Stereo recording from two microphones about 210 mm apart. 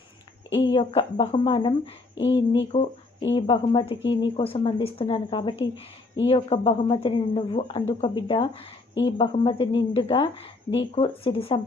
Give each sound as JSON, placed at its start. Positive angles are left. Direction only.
{"t": 0.5, "sound": "speech", "side_deg": 25}